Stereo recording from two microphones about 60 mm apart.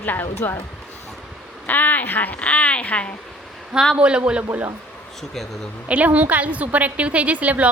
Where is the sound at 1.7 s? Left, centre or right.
Left.